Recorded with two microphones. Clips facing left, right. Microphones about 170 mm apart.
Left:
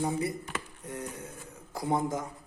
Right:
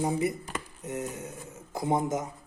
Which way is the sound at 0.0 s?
20° right (ahead or behind).